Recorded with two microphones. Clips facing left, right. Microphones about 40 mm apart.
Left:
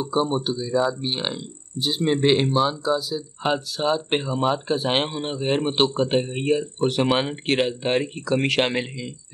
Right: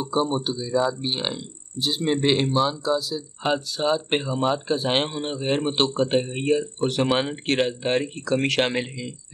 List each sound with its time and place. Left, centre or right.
0.0 s speech: centre